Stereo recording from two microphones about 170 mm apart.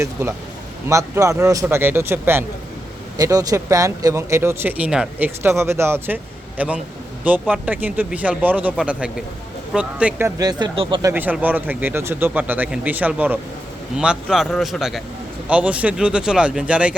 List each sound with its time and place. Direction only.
0.0 s speech: 15° right (ahead or behind)
11.1 s a man's voice: 10° right (ahead or behind)